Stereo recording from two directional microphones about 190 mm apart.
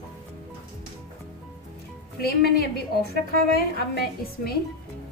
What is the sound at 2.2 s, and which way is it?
A woman's voice, 55° left (ahead or behind).